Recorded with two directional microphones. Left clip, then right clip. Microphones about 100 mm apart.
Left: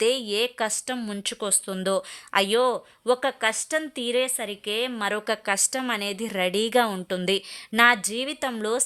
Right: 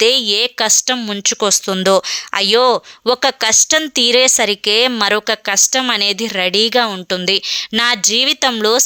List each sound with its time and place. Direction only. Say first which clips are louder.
0.0 s speech: right 11 dB; 25° right (ahead or behind)
0.9 s speech: right 13 dB; 40° right (ahead or behind); by 5.0 s 60° right (ahead or behind)
5.3 s a woman's voice: right 10 dB; 20° right (ahead or behind)
7.1 s speech: right 10 dB; 20° right (ahead or behind); by 8.8 s 40° right (ahead or behind)